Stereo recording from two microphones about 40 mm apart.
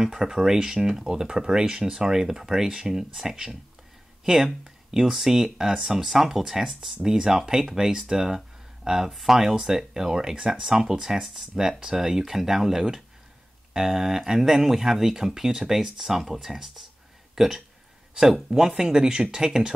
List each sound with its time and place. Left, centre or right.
0.0 s speech: centre